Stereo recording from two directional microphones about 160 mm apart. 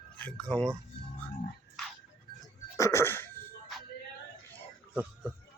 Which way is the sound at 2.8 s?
15° left (ahead or behind).